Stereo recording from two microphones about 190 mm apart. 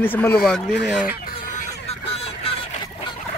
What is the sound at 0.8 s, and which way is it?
Speech, 5° right (ahead or behind).